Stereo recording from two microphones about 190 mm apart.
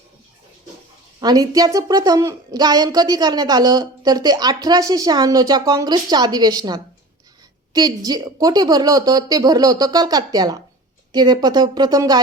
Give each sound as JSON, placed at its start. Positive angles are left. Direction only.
{"t": 1.2, "sound": "a woman's voice", "side_deg": -20}